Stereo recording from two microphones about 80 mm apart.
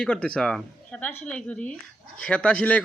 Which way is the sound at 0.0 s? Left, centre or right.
Centre.